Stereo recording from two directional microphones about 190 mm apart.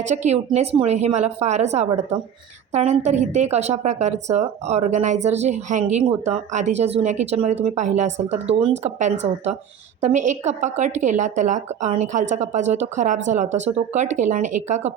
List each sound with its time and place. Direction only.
0.1 s a woman's voice: 35° right (ahead or behind)